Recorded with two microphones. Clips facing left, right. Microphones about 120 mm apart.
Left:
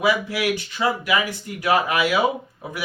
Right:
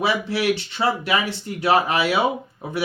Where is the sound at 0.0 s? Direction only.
30° right (ahead or behind).